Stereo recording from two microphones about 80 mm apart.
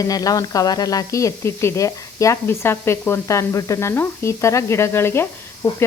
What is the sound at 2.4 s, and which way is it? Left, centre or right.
Speech, left.